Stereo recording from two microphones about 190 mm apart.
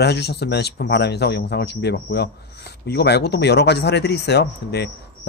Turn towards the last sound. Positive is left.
turn(degrees=60)  # may be behind; listen again after turning